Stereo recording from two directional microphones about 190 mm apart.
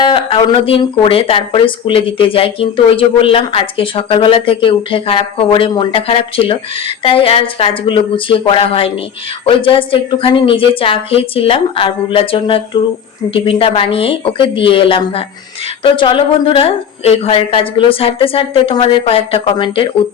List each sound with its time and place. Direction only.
0.0 s speech: 30° left (ahead or behind)